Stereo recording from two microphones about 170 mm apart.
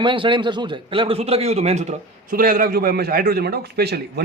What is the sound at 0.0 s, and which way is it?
A man's voice, 30° right (ahead or behind).